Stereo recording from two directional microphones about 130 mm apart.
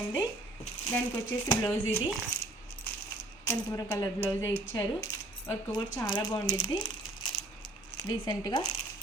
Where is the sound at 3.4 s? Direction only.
20° left (ahead or behind).